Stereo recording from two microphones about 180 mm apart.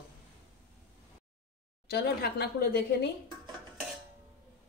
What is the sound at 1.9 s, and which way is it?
Speech, 60° left (ahead or behind).